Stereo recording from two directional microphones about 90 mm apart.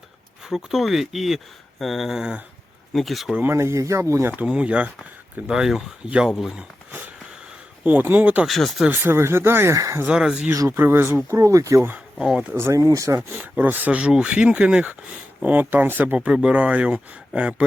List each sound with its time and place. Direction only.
0.4 s speech: 5° right (ahead or behind)
3.5 s speech: 30° right (ahead or behind)
4.3 s speech: 15° right (ahead or behind)
7.9 s speech: 20° right (ahead or behind)
8.4 s speech: centre (ahead or behind)
8.9 s speech: 25° right (ahead or behind)
9.7 s speech: 40° right (ahead or behind)
10.1 s speech: 10° right (ahead or behind)
10.7 s speech: 25° right (ahead or behind)
11.3 s speech: 35° right (ahead or behind)
12.2 s speech: 10° right (ahead or behind)
12.5 s speech: 25° right (ahead or behind)
12.8 s speech: 35° right (ahead or behind); by 17.7 s 15° right (ahead or behind)